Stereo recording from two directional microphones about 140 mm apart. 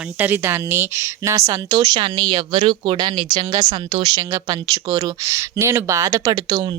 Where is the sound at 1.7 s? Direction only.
30° right (ahead or behind).